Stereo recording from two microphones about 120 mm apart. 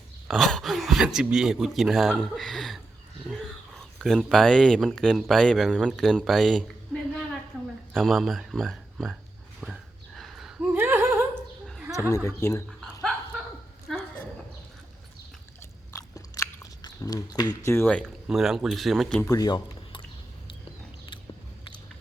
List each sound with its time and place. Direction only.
0.3 s speech: 5° left (ahead or behind)
9.6 s a sound: 5° right (ahead or behind)
10.7 s a sound: 20° right (ahead or behind)
11.9 s speech: 25° left (ahead or behind)
15.9 s biting: 30° left (ahead or behind)
17.7 s speech: 15° left (ahead or behind)
18.3 s speech: 5° right (ahead or behind)
19.2 s speech: 30° left (ahead or behind)